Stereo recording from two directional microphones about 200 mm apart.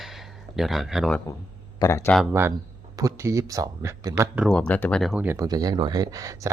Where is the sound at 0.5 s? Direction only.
Centre (ahead or behind).